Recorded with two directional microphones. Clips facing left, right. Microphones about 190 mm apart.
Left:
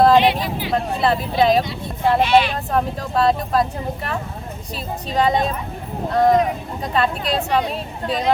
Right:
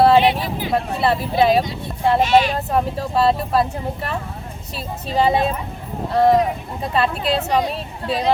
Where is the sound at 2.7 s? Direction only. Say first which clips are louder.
Even; 5° right (ahead or behind).